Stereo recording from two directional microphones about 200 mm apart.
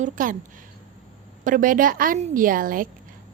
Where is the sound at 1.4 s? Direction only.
40° right (ahead or behind).